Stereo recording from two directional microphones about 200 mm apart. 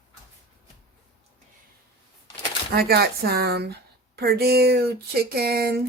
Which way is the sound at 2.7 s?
50° right (ahead or behind).